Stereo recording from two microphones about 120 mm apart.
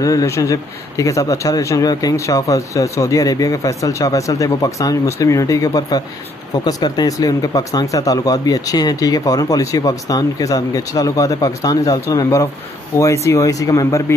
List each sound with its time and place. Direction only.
0.0 s a man's voice: 30° left (ahead or behind)